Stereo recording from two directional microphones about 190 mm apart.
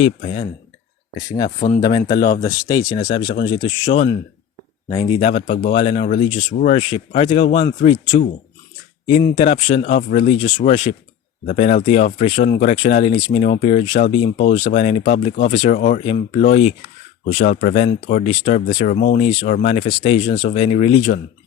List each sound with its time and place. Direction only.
0.0 s speech: 30° left (ahead or behind)
1.5 s speech: 40° left (ahead or behind)
1.8 s speech: 20° left (ahead or behind)
9.0 s speech: 25° left (ahead or behind); by 18.3 s 45° left (ahead or behind)
18.3 s speech: 30° left (ahead or behind)